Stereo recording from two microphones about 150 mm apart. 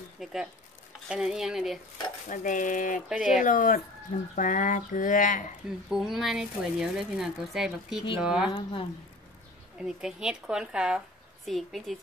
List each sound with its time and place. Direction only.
0.2 s speech: 5° right (ahead or behind)
2.2 s speech: 60° left (ahead or behind)
3.1 s speech: 5° right (ahead or behind)
3.4 s speech: 65° left (ahead or behind)
5.9 s speech: 5° right (ahead or behind)
8.5 s speech: 35° left (ahead or behind)
9.8 s speech: 5° right (ahead or behind)